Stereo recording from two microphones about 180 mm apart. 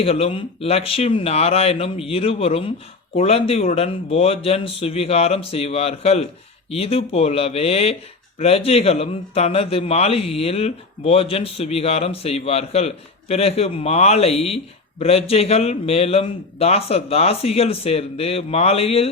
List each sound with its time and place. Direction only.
0.0 s a man's voice: 35° left (ahead or behind)